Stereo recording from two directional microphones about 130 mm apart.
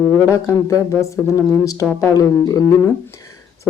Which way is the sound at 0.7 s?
25° left (ahead or behind).